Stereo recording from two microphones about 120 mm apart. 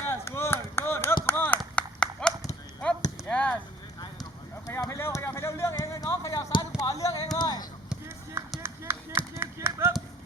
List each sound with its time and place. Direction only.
0.0 s chop: 20° left (ahead or behind)
1.3 s clapping: 15° left (ahead or behind)
3.2 s chop: 10° left (ahead or behind)
4.2 s a sound: 30° left (ahead or behind)
8.6 s music: 20° right (ahead or behind)